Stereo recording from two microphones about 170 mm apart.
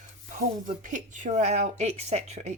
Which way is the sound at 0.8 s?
45° right (ahead or behind).